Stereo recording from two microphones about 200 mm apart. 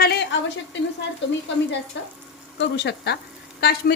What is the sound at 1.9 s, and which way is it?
A woman's voice, 65° left (ahead or behind).